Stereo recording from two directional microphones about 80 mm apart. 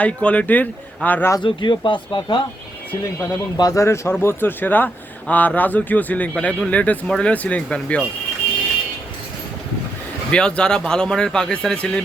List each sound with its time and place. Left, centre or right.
0.0 s speech: centre
1.4 s speech: left
3.6 s speech: left; by 8.0 s centre
10.3 s speech: centre